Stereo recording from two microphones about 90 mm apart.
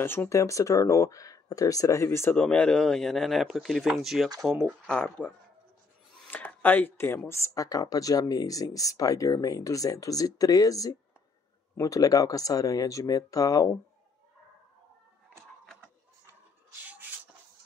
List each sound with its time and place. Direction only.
0.0 s speech: 25° left (ahead or behind)
0.3 s speech: 35° left (ahead or behind)
2.3 s speech: 10° left (ahead or behind)
4.8 s speech: 10° left (ahead or behind)
6.2 s a sound: 20° left (ahead or behind)
7.2 s speech: 30° left (ahead or behind)